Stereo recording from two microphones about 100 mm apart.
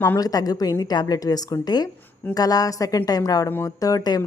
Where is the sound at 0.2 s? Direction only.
40° left (ahead or behind).